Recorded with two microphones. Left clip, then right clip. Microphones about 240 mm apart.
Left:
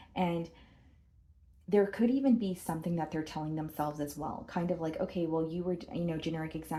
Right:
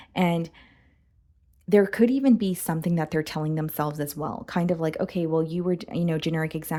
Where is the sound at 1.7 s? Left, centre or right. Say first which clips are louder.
Right 8 dB; right.